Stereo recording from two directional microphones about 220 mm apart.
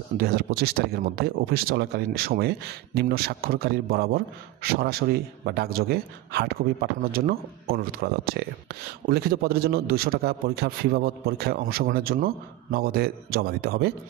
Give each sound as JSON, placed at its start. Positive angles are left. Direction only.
{"t": 0.2, "sound": "speech", "side_deg": -45}